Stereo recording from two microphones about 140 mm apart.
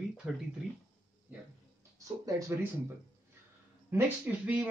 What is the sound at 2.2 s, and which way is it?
Speech, 25° right (ahead or behind).